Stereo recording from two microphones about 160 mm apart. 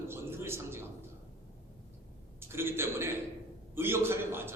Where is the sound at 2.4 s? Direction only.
15° right (ahead or behind).